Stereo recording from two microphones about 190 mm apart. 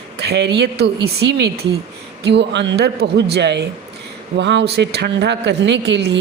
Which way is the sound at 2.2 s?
65° right (ahead or behind).